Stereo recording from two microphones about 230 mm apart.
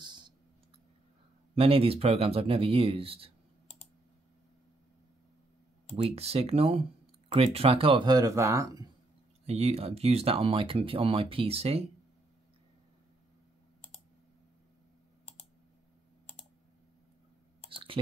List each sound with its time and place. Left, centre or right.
0.0 s clicking: centre
1.5 s speech: right
6.1 s speech: right
9.5 s speech: right
17.6 s clicking: right